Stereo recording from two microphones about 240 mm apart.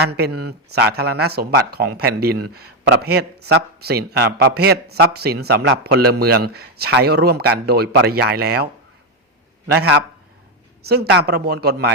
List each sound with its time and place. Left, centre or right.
0.0 s a man's voice: right
9.7 s a man's voice: right